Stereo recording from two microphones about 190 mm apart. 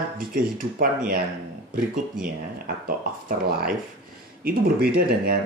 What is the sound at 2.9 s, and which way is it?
Speech, 50° right (ahead or behind).